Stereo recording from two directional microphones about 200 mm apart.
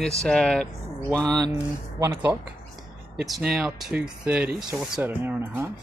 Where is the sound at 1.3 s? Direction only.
20° right (ahead or behind).